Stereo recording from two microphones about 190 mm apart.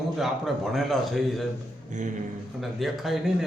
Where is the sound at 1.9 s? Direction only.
40° right (ahead or behind).